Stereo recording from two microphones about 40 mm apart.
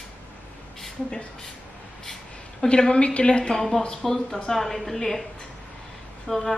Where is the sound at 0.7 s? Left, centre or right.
Centre.